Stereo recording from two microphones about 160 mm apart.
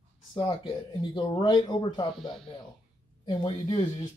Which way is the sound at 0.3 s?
30° left (ahead or behind).